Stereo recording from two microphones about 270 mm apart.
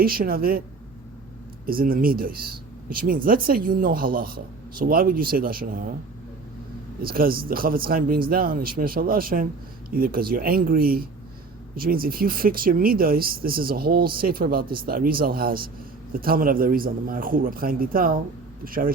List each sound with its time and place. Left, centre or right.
0.0 s speech: right
1.6 s speech: right
7.0 s speech: right